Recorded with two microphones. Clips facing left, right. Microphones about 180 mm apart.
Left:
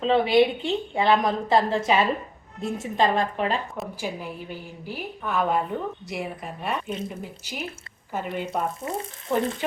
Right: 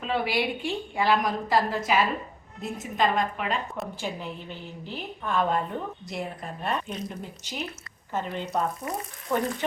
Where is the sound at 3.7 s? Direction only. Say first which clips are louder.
Left 1 dB; 5° left (ahead or behind).